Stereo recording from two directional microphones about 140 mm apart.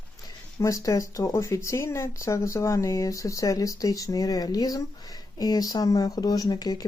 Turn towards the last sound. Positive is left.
turn(degrees=30)  # may be behind; listen again after turning